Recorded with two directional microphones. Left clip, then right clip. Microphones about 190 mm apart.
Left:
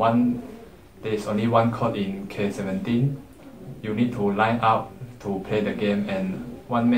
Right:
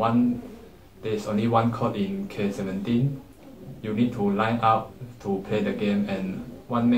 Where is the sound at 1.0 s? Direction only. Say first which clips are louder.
Left 1 dB; 5° left (ahead or behind).